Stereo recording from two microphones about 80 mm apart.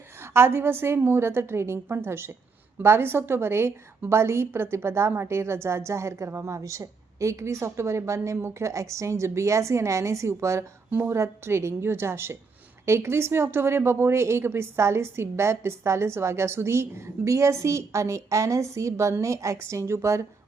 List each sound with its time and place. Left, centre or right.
0.2 s a woman's voice: right